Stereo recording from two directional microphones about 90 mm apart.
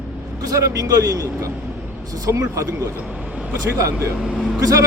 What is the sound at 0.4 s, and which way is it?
Speech, 40° right (ahead or behind).